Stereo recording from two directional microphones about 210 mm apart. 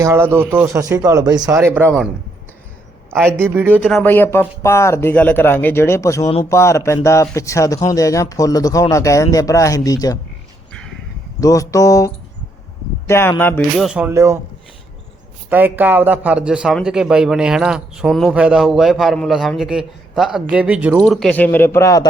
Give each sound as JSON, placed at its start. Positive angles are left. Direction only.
{"t": 0.0, "sound": "speech", "side_deg": -15}
{"t": 3.3, "sound": "speech", "side_deg": -10}
{"t": 4.0, "sound": "speech", "side_deg": 10}
{"t": 10.7, "sound": "a sound", "side_deg": 5}
{"t": 11.3, "sound": "speech", "side_deg": 15}
{"t": 13.7, "sound": "speech", "side_deg": -5}
{"t": 15.4, "sound": "speech", "side_deg": -10}